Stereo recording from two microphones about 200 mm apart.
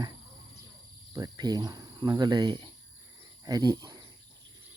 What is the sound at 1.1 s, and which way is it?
Speech, 20° right (ahead or behind).